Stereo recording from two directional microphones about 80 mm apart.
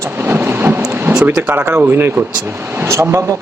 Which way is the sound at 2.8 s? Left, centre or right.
Right.